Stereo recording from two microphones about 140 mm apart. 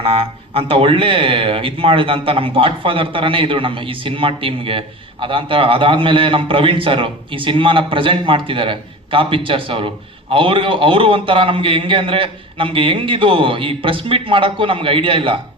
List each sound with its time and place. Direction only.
0.0 s speech: 40° right (ahead or behind)